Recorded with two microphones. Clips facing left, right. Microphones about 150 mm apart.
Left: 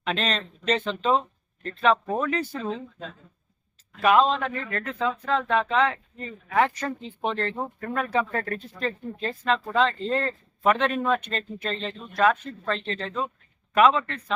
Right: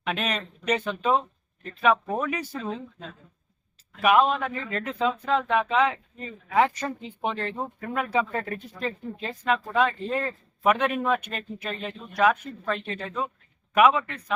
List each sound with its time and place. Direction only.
0.0 s a man's voice: 10° right (ahead or behind)
4.0 s a man's voice: 10° right (ahead or behind)